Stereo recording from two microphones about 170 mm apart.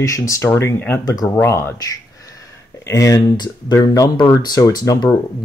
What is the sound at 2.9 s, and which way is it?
Speech, 20° left (ahead or behind).